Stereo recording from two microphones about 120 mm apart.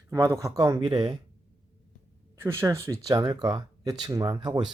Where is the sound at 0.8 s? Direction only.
35° right (ahead or behind).